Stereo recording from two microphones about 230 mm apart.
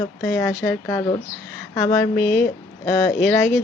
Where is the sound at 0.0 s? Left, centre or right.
Centre.